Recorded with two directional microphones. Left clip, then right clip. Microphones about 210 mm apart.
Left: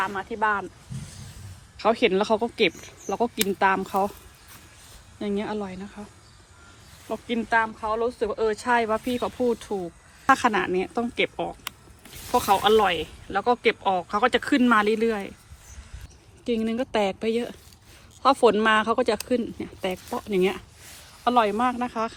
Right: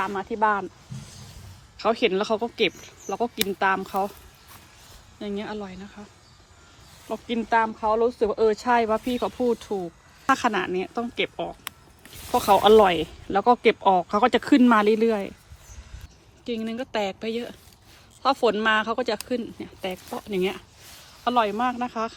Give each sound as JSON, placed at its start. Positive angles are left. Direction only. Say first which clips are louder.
{"t": 0.0, "sound": "speech", "louder": "right 1 dB", "side_deg": -25}
{"t": 5.2, "sound": "speech", "louder": "left 3 dB", "side_deg": -5}
{"t": 7.1, "sound": "speech", "louder": "even", "side_deg": -15}
{"t": 16.5, "sound": "speech", "louder": "left 4 dB", "side_deg": 0}